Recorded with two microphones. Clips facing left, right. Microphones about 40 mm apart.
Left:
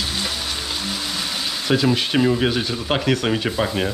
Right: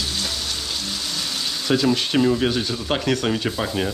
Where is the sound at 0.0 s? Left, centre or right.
Centre.